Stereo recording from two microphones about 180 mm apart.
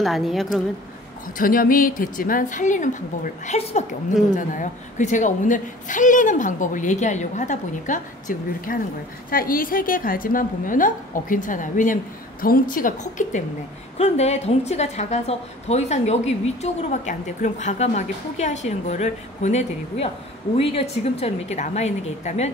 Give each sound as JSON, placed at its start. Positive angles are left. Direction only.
{"t": 0.0, "sound": "a woman's voice", "side_deg": 0}
{"t": 1.4, "sound": "a woman's voice", "side_deg": 50}
{"t": 13.9, "sound": "a woman's voice", "side_deg": 35}